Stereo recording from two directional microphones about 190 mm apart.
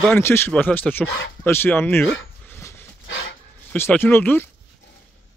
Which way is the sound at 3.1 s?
85° left.